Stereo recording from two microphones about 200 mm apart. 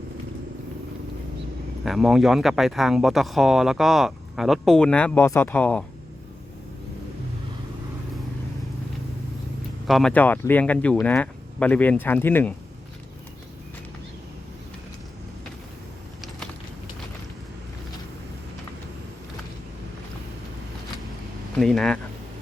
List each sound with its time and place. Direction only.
1.8 s speech: centre (ahead or behind)
9.8 s speech: centre (ahead or behind)
21.6 s speech: centre (ahead or behind)